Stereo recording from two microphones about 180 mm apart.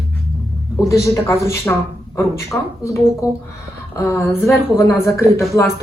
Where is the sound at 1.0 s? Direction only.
15° left (ahead or behind).